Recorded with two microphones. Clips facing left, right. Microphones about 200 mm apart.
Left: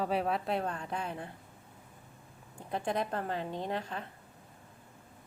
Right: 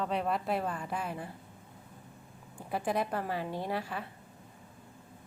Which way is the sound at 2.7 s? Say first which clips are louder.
Right 1 dB; 5° right (ahead or behind).